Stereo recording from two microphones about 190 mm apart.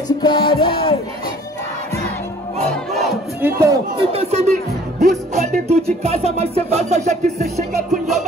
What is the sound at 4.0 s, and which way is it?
Speech, 30° right (ahead or behind).